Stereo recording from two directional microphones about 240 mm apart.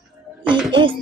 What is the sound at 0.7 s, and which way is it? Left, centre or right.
Speech, centre.